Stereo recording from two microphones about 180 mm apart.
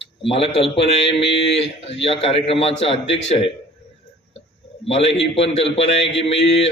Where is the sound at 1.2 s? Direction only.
75° left (ahead or behind).